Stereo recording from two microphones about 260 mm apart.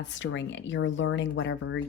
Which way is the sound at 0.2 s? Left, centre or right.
Left.